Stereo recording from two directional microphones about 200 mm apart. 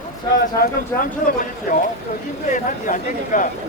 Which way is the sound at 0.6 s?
45° left (ahead or behind).